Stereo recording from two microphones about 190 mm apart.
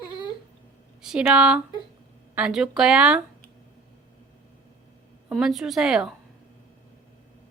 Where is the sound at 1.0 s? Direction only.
5° right (ahead or behind).